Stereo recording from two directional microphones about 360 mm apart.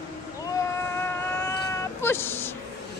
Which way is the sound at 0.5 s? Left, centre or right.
Centre.